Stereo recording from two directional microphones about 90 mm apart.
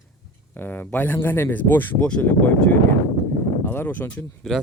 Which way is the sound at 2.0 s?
10° left (ahead or behind).